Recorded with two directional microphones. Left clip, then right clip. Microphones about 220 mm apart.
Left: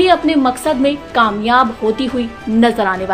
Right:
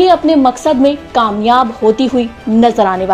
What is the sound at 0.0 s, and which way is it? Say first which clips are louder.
A woman's voice: right 3 dB; 15° right (ahead or behind).